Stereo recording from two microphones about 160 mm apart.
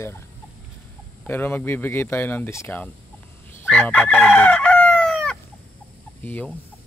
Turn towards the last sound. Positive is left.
turn(degrees=10)  # may be behind; listen again after turning